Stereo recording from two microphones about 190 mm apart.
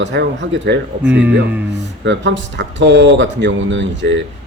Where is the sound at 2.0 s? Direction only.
70° right (ahead or behind).